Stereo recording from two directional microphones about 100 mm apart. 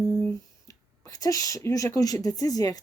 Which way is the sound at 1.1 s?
35° left (ahead or behind).